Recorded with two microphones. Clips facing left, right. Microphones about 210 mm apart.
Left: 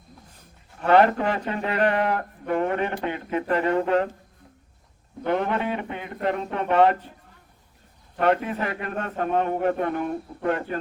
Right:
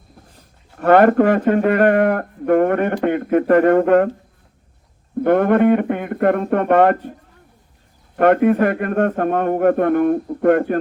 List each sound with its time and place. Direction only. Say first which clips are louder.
0.8 s a man's voice: right 7 dB; 55° right (ahead or behind)
5.2 s a man's voice: right 11 dB; 55° right (ahead or behind)
8.2 s a man's voice: right 10 dB; 55° right (ahead or behind)